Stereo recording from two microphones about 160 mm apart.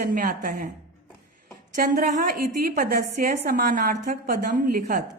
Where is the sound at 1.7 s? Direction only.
55° right (ahead or behind).